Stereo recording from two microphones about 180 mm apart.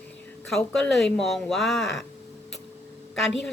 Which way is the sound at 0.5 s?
Centre (ahead or behind).